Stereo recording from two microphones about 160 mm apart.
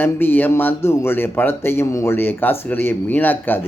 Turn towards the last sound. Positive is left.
turn(degrees=10)  # may be behind; listen again after turning